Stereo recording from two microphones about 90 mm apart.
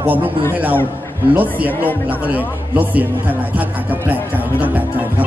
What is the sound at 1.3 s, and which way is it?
Speech, 20° right (ahead or behind).